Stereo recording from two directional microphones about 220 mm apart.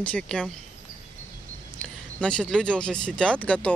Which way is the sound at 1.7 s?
5° left (ahead or behind).